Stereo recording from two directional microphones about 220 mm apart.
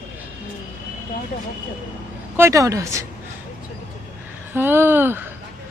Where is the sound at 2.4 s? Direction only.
15° right (ahead or behind).